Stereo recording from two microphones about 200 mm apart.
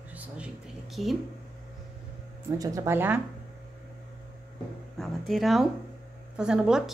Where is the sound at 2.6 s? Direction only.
15° right (ahead or behind).